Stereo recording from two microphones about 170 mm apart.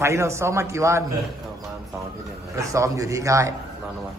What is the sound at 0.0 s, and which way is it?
A man's voice, 15° right (ahead or behind).